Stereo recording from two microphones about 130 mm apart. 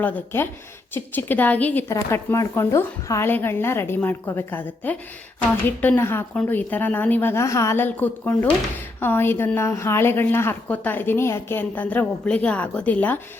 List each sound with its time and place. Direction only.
0.9 s a woman's voice: 15° left (ahead or behind)